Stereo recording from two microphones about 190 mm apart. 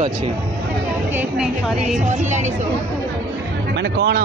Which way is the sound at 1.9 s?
40° right (ahead or behind).